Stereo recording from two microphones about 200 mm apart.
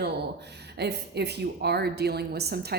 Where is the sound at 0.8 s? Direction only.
55° right (ahead or behind).